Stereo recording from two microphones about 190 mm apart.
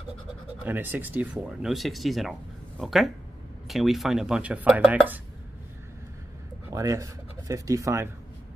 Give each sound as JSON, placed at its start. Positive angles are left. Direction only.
{"t": 0.7, "sound": "speech", "side_deg": -10}
{"t": 6.7, "sound": "speech", "side_deg": -15}